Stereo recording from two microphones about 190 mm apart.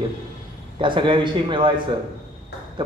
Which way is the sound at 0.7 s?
25° right (ahead or behind).